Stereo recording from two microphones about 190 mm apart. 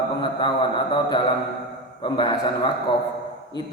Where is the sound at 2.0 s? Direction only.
20° left (ahead or behind).